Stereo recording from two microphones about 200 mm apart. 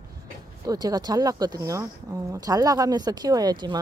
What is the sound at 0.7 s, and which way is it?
Speech, 20° right (ahead or behind).